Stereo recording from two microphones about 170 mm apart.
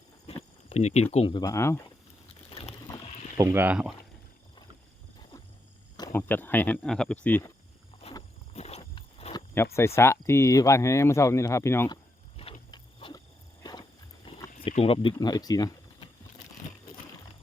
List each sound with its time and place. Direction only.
0.3 s a sound: 35° left (ahead or behind)
0.7 s speech: 40° left (ahead or behind)
1.4 s speech: 15° left (ahead or behind)
2.5 s rowboat: 35° left (ahead or behind)
2.8 s rowboat: 25° left (ahead or behind)
3.3 s speech: 15° right (ahead or behind)
6.0 s speech: 15° left (ahead or behind)
8.5 s a sound: 35° left (ahead or behind)
9.7 s speech: 15° left (ahead or behind)
12.4 s vehicle: 35° left (ahead or behind)
12.7 s a sound: 25° left (ahead or behind)
14.6 s speech: 35° left (ahead or behind)